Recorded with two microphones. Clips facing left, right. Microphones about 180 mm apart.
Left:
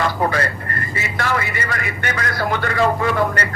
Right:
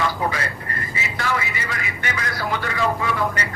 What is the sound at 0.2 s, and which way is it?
Speech, 55° left (ahead or behind).